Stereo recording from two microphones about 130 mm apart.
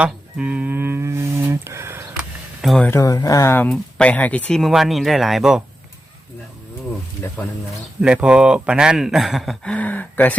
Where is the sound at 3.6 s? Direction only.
5° left (ahead or behind).